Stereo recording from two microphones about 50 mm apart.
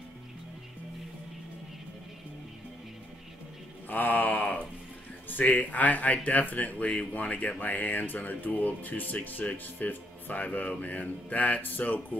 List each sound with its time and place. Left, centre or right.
3.9 s mantra: left
5.4 s speech: left